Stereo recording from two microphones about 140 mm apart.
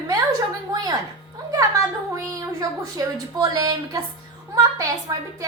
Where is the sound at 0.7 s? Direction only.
30° right (ahead or behind).